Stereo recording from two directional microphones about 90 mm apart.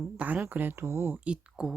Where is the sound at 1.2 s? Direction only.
10° right (ahead or behind).